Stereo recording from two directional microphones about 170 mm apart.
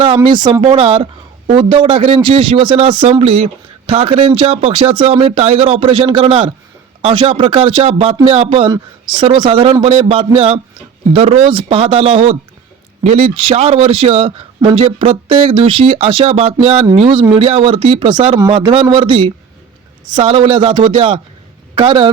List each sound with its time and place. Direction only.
0.0 s a man's voice: 30° right (ahead or behind)